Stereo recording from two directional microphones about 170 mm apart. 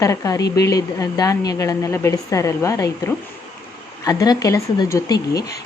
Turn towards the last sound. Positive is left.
turn(degrees=20)  # may be behind; listen again after turning